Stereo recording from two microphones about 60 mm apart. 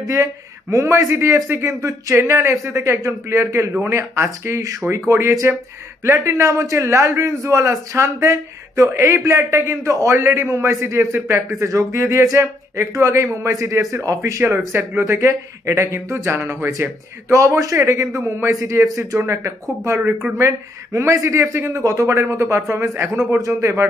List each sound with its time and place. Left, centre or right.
0.0 s a man's voice: right
2.1 s a man's voice: right
10.1 s speech: right
11.6 s a man's voice: right
14.7 s a man's voice: right